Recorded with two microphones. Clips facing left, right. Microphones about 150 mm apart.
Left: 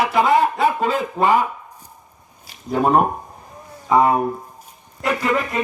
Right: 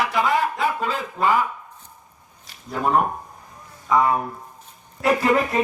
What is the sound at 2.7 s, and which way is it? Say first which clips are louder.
Speech: left 4 dB; 25° left (ahead or behind).